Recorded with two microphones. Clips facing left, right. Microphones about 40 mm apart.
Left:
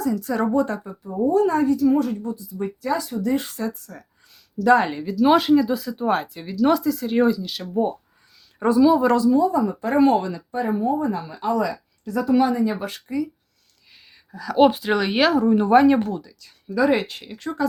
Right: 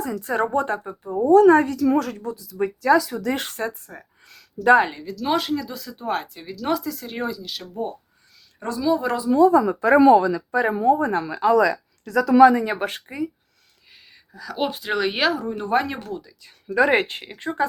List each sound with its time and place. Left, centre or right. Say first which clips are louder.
0.0 s speech: left 1 dB; right
1.3 s speech: right 6 dB; right
1.7 s a woman's voice: left 2 dB; right
3.4 s speech: right 1 dB; right
3.8 s speech: even; right
4.9 s speech: left 7 dB; centre
7.7 s speech: left 7 dB; centre
8.8 s speech: left 5 dB; centre
9.3 s a woman's voice: right 3 dB; right
10.9 s speech: right 2 dB; right
12.6 s speech: even; right
14.3 s speech: left 9 dB; centre
16.6 s speech: right 1 dB; right